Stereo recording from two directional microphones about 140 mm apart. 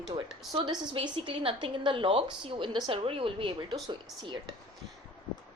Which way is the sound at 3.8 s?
30° right (ahead or behind).